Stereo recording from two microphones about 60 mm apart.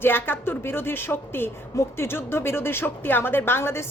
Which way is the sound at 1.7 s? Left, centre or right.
Left.